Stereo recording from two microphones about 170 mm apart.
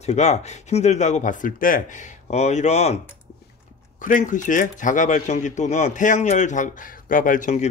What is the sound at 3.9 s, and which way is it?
Speech, 50° left (ahead or behind).